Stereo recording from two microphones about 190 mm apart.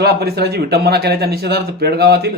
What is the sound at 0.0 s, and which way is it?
Speech, 55° right (ahead or behind).